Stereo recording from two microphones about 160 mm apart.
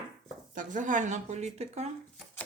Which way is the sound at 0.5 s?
55° right (ahead or behind).